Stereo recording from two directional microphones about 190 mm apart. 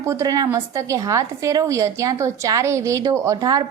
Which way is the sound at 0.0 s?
15° right (ahead or behind).